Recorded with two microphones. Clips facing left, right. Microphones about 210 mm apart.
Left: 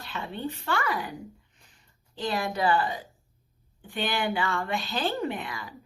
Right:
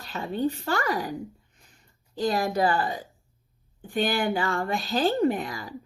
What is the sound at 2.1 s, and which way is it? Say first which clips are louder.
A woman's voice: right 5 dB; 40° right (ahead or behind).